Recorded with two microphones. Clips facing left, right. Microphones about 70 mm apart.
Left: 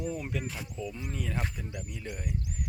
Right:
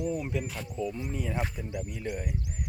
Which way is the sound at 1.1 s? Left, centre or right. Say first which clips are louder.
Right 3 dB; centre.